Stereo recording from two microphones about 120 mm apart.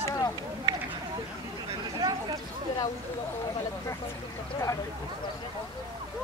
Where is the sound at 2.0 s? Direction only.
35° right (ahead or behind).